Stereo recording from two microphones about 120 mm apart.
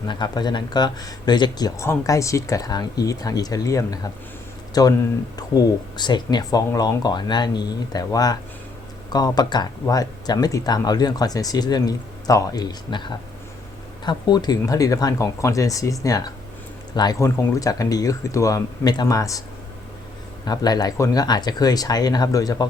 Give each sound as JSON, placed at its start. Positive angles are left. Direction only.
{"t": 0.1, "sound": "speech", "side_deg": 35}
{"t": 1.8, "sound": "speech", "side_deg": 25}
{"t": 20.4, "sound": "speech", "side_deg": 35}